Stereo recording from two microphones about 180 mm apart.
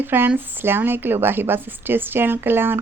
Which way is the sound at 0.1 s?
10° right (ahead or behind).